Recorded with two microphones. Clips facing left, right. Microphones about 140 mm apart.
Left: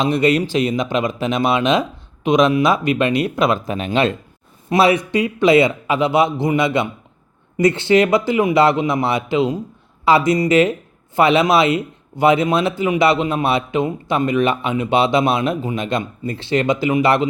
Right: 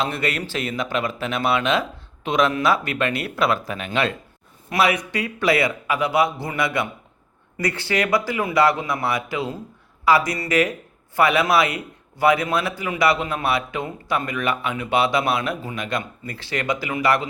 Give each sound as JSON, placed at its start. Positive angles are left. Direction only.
{"t": 0.0, "sound": "speech", "side_deg": 20}